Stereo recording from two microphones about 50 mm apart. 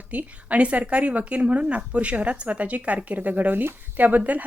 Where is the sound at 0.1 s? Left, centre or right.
Right.